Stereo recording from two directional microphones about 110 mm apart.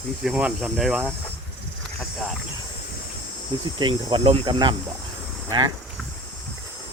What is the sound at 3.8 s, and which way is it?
Speech, 45° right (ahead or behind).